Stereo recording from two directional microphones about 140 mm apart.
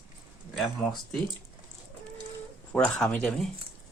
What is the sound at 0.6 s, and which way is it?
Speech, 5° left (ahead or behind).